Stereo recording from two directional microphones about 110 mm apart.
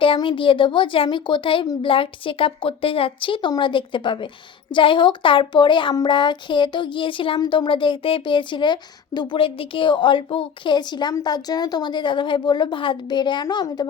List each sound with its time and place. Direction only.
0.0 s speech: 50° left (ahead or behind)
7.3 s speech: 40° left (ahead or behind)